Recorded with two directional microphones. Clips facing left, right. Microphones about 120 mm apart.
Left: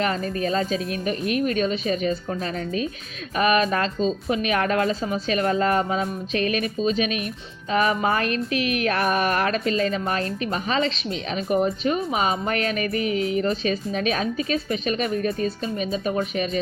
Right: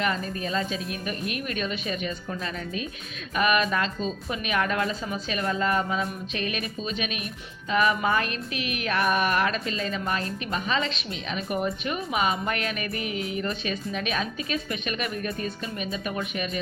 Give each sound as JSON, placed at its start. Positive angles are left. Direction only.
{"t": 0.0, "sound": "a woman's voice", "side_deg": 35}